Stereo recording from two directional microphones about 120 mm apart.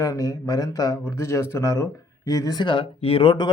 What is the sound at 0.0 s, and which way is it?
Speech, 25° left (ahead or behind).